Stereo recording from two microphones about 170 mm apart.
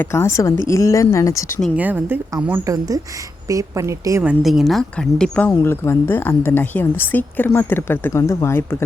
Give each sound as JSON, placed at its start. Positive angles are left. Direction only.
{"t": 0.0, "sound": "speech", "side_deg": 15}
{"t": 1.7, "sound": "a woman's voice", "side_deg": -10}
{"t": 4.2, "sound": "speech", "side_deg": -5}